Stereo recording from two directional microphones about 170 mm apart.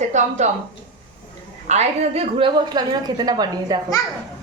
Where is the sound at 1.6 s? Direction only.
40° right (ahead or behind); by 3.8 s 25° right (ahead or behind).